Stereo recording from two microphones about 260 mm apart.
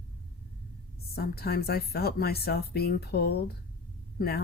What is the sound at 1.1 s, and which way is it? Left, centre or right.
A woman's voice, left.